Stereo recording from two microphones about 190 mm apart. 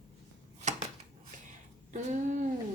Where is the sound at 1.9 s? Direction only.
40° right (ahead or behind).